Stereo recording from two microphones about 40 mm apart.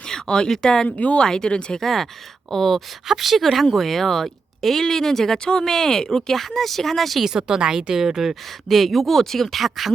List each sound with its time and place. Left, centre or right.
0.1 s a sound: centre
0.5 s speech: centre
0.9 s speech: left
1.2 s speech: centre
1.8 s speech: centre
3.1 s speech: centre
7.2 s a woman's voice: centre